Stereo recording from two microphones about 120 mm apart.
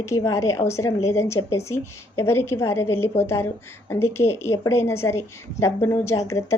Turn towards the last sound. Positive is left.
turn(degrees=25)  # may be behind; listen again after turning